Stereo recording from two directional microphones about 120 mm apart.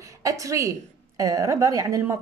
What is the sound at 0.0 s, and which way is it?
A woman's voice, 25° right (ahead or behind).